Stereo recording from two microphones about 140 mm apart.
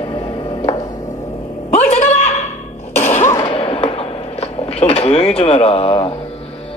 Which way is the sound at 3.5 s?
45° left (ahead or behind).